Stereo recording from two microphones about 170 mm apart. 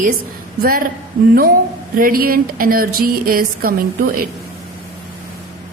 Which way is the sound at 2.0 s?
60° right (ahead or behind).